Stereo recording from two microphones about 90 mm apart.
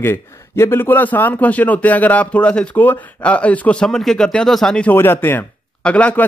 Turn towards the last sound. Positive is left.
turn(degrees=15)  # may be behind; listen again after turning